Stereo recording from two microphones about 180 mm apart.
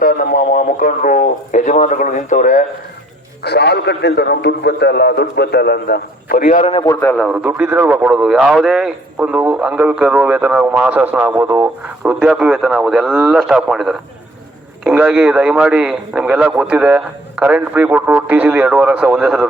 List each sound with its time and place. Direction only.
0.0 s speech: 50° left (ahead or behind)
3.4 s a man's voice: 65° left (ahead or behind); by 6.7 s 45° left (ahead or behind)
6.7 s a man's voice: 15° left (ahead or behind)
7.3 s a man's voice: 10° right (ahead or behind)